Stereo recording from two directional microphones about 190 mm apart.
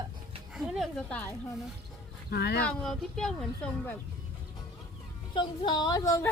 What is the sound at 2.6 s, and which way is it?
Speech, centre (ahead or behind).